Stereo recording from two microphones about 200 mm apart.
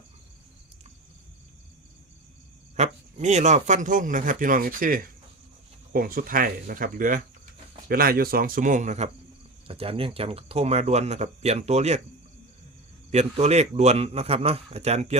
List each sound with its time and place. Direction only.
2.7 s speech: 35° right (ahead or behind)
13.1 s speech: 35° right (ahead or behind)